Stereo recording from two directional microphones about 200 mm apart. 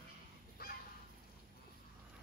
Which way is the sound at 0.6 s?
50° left (ahead or behind).